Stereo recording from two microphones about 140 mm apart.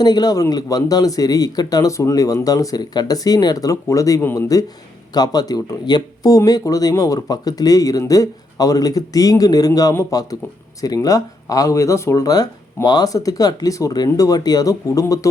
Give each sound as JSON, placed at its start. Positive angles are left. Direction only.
{"t": 0.0, "sound": "speech", "side_deg": 30}